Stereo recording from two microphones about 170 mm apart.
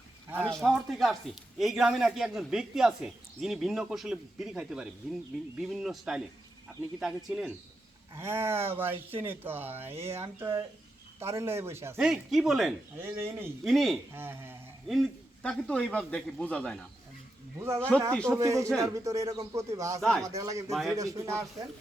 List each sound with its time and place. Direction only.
0.4 s speech: 5° left (ahead or behind)
8.1 s speech: 15° right (ahead or behind)
11.9 s speech: 5° right (ahead or behind)
13.0 s speech: 15° right (ahead or behind)
13.7 s speech: centre (ahead or behind)
14.1 s speech: 15° right (ahead or behind)
14.8 s speech: centre (ahead or behind)
17.6 s speech: 15° right (ahead or behind)
20.0 s speech: 5° left (ahead or behind)
20.2 s speech: 20° right (ahead or behind)
20.7 s speech: centre (ahead or behind)
20.9 s speech: 20° right (ahead or behind)